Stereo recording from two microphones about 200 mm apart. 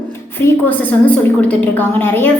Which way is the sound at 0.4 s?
10° left (ahead or behind).